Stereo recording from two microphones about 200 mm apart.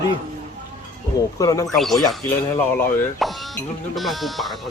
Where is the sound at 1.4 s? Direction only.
15° left (ahead or behind).